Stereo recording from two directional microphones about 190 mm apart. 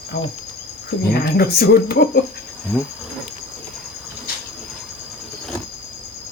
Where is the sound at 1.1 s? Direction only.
55° left (ahead or behind).